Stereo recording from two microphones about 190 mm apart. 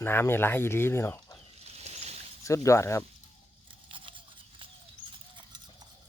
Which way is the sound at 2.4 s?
15° left (ahead or behind).